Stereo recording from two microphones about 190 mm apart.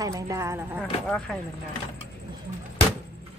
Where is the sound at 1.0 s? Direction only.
5° left (ahead or behind).